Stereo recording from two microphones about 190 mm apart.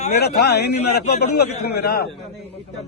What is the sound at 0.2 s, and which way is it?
A man's voice, 55° left (ahead or behind).